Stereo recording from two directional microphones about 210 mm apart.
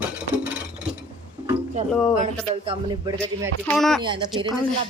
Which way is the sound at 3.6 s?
Centre (ahead or behind).